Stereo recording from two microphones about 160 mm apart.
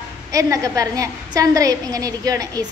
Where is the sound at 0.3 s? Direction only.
20° right (ahead or behind).